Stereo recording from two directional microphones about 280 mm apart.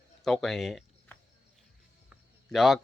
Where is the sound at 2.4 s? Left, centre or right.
Centre.